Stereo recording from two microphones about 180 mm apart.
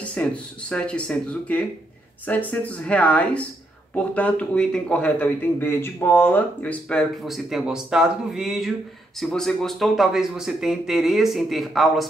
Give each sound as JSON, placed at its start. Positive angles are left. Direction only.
{"t": 0.1, "sound": "a man's voice", "side_deg": 5}